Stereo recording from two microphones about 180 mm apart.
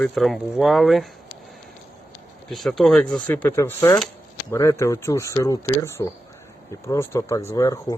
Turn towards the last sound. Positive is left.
turn(degrees=20)  # may be behind; listen again after turning